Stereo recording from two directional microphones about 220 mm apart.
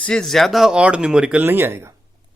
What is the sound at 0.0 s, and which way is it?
Speech, 5° left (ahead or behind).